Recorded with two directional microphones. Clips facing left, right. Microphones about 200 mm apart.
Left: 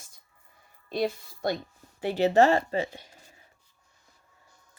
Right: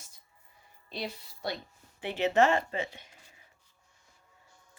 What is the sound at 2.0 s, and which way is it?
Speech, 35° left (ahead or behind).